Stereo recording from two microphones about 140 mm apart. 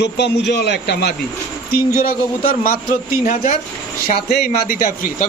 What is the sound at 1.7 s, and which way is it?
A man's voice, 85° left.